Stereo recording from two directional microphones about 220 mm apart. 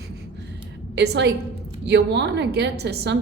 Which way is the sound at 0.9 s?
50° right (ahead or behind).